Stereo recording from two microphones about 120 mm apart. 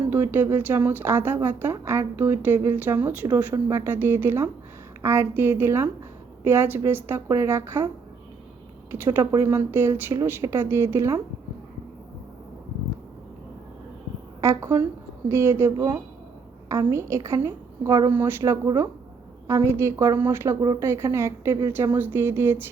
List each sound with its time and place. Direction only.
0.1 s speech: 15° right (ahead or behind)
3.2 s speech: 30° right (ahead or behind)
3.8 s speech: 20° right (ahead or behind)
8.9 s speech: 25° right (ahead or behind)
14.4 s speech: 25° right (ahead or behind)